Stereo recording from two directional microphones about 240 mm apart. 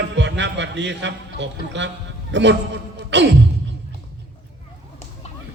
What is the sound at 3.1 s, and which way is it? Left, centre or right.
Music, right.